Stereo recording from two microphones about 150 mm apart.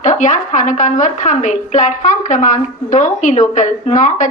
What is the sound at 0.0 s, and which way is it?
A woman's voice, 55° left (ahead or behind).